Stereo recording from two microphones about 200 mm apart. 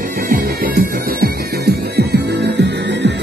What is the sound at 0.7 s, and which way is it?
Music, 50° right (ahead or behind).